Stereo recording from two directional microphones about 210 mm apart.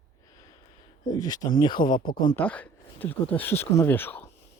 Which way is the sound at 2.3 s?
10° left (ahead or behind).